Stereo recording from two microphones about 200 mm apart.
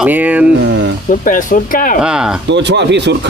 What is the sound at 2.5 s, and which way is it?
Speech, 60° right (ahead or behind).